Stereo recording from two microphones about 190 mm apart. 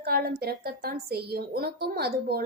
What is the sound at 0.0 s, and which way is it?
A woman's voice, 55° right (ahead or behind).